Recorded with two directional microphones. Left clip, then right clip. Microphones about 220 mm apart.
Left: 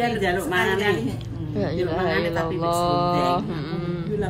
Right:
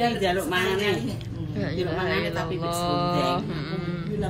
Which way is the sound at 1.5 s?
15° left (ahead or behind).